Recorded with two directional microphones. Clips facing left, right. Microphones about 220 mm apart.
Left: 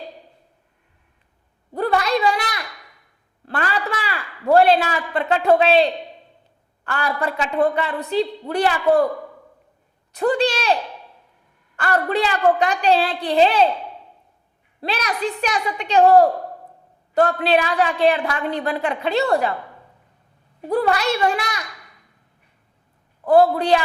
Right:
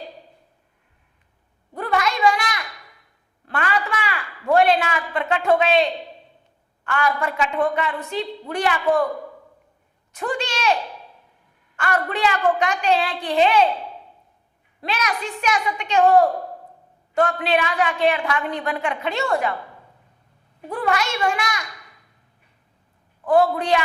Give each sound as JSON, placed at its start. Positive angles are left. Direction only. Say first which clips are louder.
{"t": 1.7, "sound": "a sound", "louder": "left 4 dB", "side_deg": 35}
{"t": 6.8, "sound": "a woman's voice", "louder": "right 1 dB", "side_deg": 35}
{"t": 10.1, "sound": "a woman's voice", "louder": "left 7 dB", "side_deg": 35}
{"t": 11.8, "sound": "a woman's voice", "louder": "left 2 dB", "side_deg": 35}
{"t": 14.8, "sound": "a woman's voice", "louder": "left 2 dB", "side_deg": 35}
{"t": 20.7, "sound": "a woman's voice", "louder": "left 4 dB", "side_deg": 35}
{"t": 23.2, "sound": "a woman's voice", "louder": "left 3 dB", "side_deg": 35}